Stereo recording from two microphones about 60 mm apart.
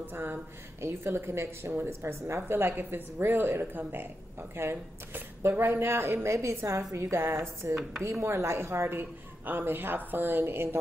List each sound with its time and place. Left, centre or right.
0.0 s speech: right
6.2 s a woman's voice: right
7.1 s a woman's voice: right